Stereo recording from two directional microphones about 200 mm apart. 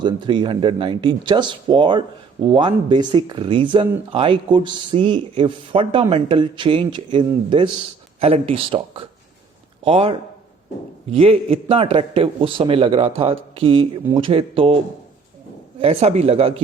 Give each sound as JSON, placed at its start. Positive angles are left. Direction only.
{"t": 0.0, "sound": "speech", "side_deg": -25}
{"t": 15.8, "sound": "a man's voice", "side_deg": -30}